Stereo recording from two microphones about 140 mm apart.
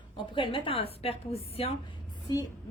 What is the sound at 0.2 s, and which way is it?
A woman's voice, 35° left (ahead or behind).